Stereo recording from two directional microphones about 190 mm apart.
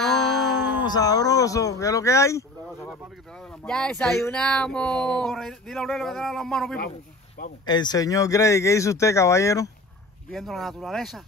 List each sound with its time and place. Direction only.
0.0 s a sound: centre (ahead or behind)
0.6 s a sound: 65° left (ahead or behind)
0.8 s speech: 20° left (ahead or behind)
3.3 s speech: 5° left (ahead or behind)
7.6 s speech: 20° left (ahead or behind)
10.3 s speech: centre (ahead or behind)